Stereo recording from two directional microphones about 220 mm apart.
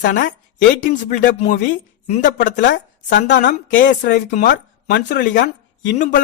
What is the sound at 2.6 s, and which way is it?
Speech, 55° left (ahead or behind).